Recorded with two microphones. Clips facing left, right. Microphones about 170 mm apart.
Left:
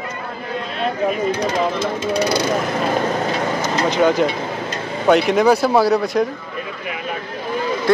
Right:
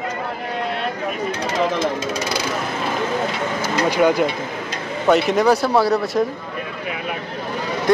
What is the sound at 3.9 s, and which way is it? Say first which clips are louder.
Speech: left 1 dB; 10° right (ahead or behind).